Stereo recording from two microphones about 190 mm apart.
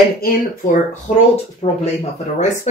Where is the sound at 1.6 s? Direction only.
30° left (ahead or behind).